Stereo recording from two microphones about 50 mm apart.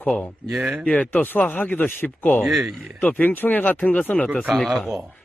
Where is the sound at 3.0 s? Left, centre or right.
Left.